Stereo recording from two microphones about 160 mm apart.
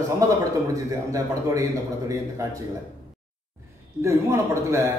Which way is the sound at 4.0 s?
20° right (ahead or behind).